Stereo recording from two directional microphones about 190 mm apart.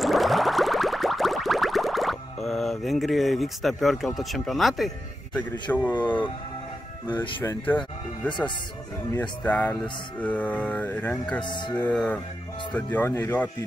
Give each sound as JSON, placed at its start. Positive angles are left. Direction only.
{"t": 0.0, "sound": "a sound", "side_deg": 0}
{"t": 7.1, "sound": "mantra", "side_deg": 10}
{"t": 9.1, "sound": "mantra", "side_deg": 5}
{"t": 11.4, "sound": "music", "side_deg": 25}
{"t": 11.7, "sound": "mantra", "side_deg": 5}